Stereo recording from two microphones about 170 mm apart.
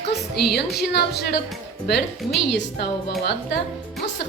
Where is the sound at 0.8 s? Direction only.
70° left (ahead or behind).